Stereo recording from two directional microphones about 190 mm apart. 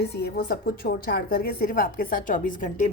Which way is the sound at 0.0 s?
60° left (ahead or behind).